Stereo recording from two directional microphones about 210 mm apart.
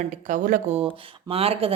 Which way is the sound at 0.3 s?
40° right (ahead or behind).